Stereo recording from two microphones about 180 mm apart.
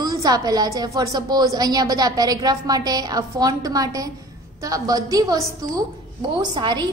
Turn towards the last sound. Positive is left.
turn(degrees=-25)  # may be behind; listen again after turning